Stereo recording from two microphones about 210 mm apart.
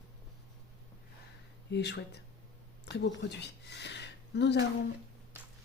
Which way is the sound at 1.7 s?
55° left (ahead or behind).